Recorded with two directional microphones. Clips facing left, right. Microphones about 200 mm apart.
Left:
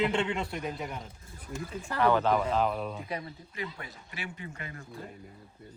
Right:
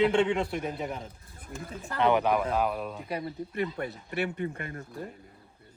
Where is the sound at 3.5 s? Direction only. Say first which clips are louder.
Right 8 dB; 60° right (ahead or behind).